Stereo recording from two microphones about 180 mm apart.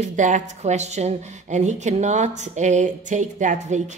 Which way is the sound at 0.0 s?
45° right (ahead or behind).